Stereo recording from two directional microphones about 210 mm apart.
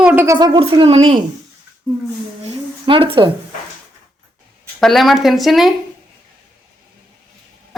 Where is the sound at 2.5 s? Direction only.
25° right (ahead or behind).